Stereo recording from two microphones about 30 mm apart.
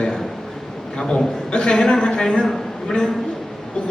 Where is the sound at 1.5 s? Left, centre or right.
Left.